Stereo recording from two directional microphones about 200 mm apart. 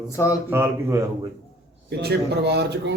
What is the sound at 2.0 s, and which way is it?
Speech, 55° right (ahead or behind).